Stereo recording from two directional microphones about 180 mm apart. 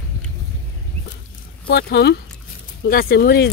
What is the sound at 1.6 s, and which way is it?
Speech, 60° left (ahead or behind).